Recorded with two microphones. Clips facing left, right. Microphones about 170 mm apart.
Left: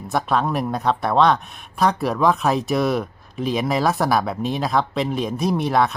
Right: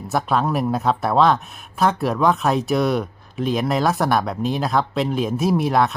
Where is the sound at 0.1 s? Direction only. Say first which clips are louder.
Right 1 dB; centre (ahead or behind).